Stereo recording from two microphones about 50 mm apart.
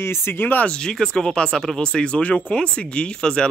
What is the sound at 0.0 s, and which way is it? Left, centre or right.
Speech, left.